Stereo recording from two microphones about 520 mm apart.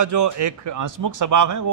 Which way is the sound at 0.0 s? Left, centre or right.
Right.